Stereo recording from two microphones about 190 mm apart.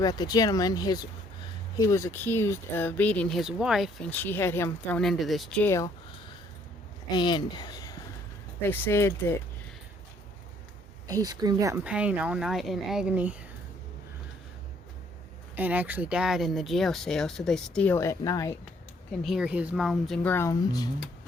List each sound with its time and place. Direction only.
0.0 s speech: 20° left (ahead or behind); by 5.7 s 5° left (ahead or behind)
7.1 s speech: 25° left (ahead or behind)
11.0 s speech: 20° right (ahead or behind)
11.9 s speech: 5° right (ahead or behind)
15.5 s speech: 10° right (ahead or behind); by 18.5 s 15° left (ahead or behind)
19.2 s speech: centre (ahead or behind)
20.3 s speech: 15° left (ahead or behind)